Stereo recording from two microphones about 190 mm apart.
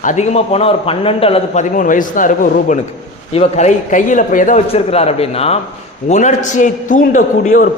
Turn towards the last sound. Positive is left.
turn(degrees=40)  # may be behind; listen again after turning